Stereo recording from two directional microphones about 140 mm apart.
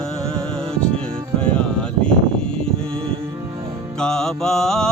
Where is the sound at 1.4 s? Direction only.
10° left (ahead or behind).